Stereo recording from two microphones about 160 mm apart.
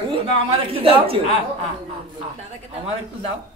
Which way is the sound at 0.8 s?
35° right (ahead or behind).